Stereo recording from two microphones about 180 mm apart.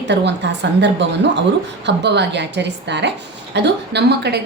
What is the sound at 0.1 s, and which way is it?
A woman's voice, 75° right (ahead or behind).